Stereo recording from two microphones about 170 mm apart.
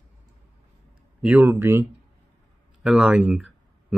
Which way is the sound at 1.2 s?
10° right (ahead or behind).